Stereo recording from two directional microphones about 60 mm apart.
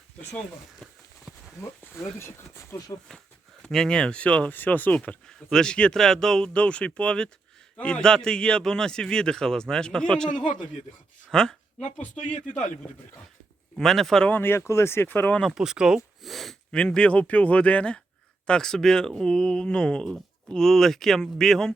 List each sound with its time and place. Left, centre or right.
0.8 s a sound: centre
1.3 s a sound: centre
2.0 s speech: left
3.1 s a man's voice: centre; by 4.9 s left
4.9 s a man's voice: centre
8.0 s a man's voice: centre
13.7 s speech: centre
14.3 s speech: left
14.7 s speech: left
15.5 s speech: centre
16.2 s speech: centre
16.7 s a man's voice: centre